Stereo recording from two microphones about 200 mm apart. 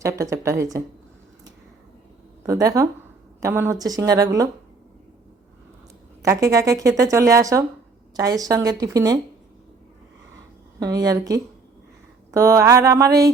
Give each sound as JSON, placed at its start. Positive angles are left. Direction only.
{"t": 0.0, "sound": "a woman's voice", "side_deg": -15}
{"t": 2.5, "sound": "a woman's voice", "side_deg": -15}
{"t": 6.2, "sound": "a woman's voice", "side_deg": -15}
{"t": 10.8, "sound": "a woman's voice", "side_deg": -20}